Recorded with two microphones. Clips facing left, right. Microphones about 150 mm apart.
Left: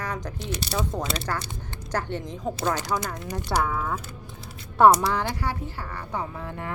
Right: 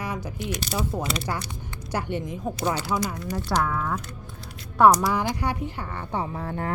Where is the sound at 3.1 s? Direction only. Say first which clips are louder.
Right 1 dB; 15° left (ahead or behind).